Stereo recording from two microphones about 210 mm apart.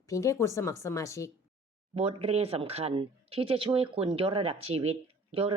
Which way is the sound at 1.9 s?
30° right (ahead or behind).